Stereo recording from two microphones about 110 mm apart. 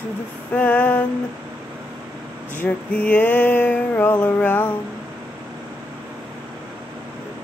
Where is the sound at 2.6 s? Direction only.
15° left (ahead or behind).